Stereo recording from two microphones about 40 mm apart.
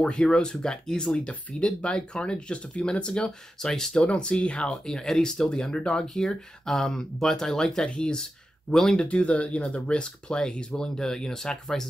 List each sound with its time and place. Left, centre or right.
0.0 s speech: left
4.1 s speech: left
4.8 s speech: centre
8.9 s speech: left